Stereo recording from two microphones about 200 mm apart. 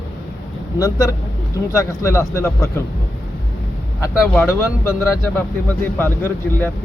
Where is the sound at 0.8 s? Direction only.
15° left (ahead or behind).